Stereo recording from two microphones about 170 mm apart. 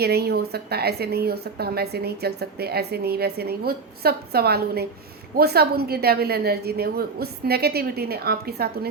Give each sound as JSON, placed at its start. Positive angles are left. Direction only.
{"t": 0.0, "sound": "a woman's voice", "side_deg": -70}